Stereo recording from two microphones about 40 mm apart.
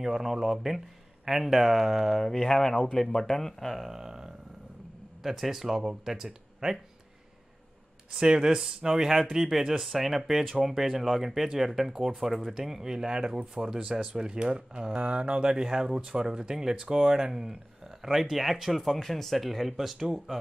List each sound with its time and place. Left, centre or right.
0.0 s speech: centre
3.9 s speech: centre
8.1 s speech: centre
15.5 s speech: centre